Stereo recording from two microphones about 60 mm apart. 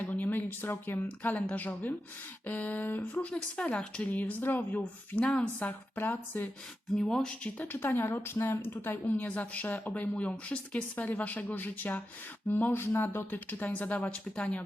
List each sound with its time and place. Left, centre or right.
0.0 s a woman's voice: left
3.3 s speech: centre; by 5.2 s left
5.2 s speech: centre
5.5 s speech: left
6.9 s speech: centre
7.6 s speech: left